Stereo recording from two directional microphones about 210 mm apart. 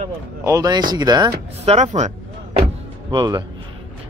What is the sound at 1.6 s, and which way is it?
Speech, 30° right (ahead or behind).